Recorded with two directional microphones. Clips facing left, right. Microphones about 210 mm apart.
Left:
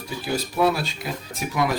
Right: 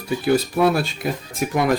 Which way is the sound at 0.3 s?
55° right (ahead or behind).